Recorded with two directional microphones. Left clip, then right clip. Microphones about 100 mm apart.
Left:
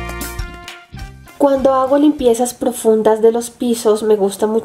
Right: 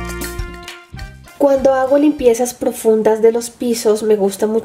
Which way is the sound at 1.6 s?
45° left (ahead or behind).